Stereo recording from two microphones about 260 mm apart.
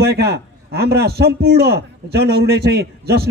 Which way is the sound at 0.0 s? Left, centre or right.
Right.